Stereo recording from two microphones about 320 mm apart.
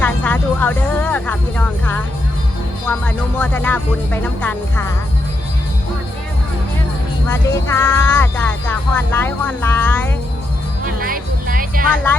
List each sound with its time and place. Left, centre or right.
0.0 s music: centre
2.8 s speech: centre
7.3 s music: centre
10.8 s music: right